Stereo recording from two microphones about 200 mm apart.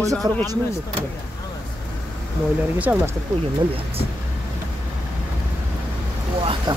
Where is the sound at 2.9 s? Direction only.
10° right (ahead or behind).